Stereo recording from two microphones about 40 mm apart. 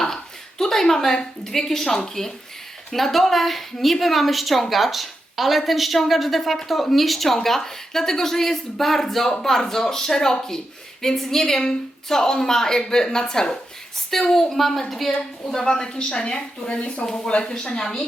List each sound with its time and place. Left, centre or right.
0.6 s a woman's voice: centre
15.5 s a woman's voice: centre